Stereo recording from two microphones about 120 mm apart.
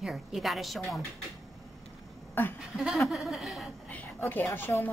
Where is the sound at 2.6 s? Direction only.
Centre (ahead or behind).